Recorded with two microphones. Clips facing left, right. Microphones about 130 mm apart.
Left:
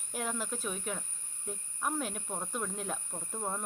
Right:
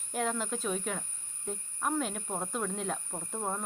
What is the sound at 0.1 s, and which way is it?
Speech, 5° left (ahead or behind).